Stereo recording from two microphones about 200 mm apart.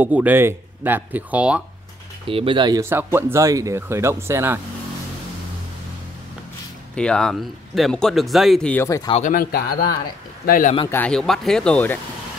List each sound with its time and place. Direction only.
0.0 s speech: 10° right (ahead or behind)
2.2 s speech: 25° right (ahead or behind)
7.0 s speech: 5° left (ahead or behind)
9.1 s speech: 40° left (ahead or behind)
10.9 s speech: 5° left (ahead or behind)